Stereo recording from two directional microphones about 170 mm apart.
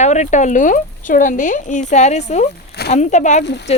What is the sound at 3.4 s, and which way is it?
Speech, 90° left.